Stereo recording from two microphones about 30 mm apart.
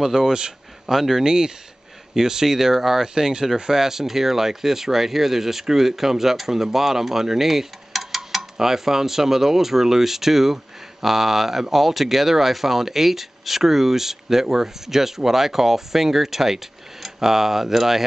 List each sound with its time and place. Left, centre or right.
0.0 s speech: centre
1.2 s speech: right
3.2 s speech: right; by 8.4 s centre
8.4 s speech: centre